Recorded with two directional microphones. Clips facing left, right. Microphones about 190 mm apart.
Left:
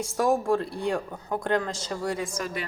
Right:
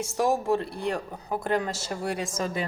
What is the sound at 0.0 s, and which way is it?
Speech, centre (ahead or behind).